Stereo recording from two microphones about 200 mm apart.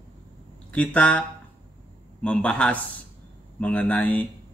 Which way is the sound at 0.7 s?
5° left (ahead or behind).